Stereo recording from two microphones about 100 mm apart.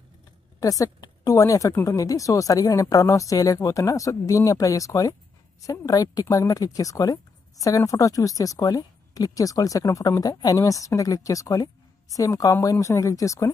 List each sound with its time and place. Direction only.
0.6 s a woman's voice: 35° left (ahead or behind)